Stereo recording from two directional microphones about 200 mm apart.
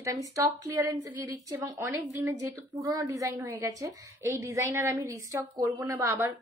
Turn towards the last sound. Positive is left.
turn(degrees=-15)  # may be behind; listen again after turning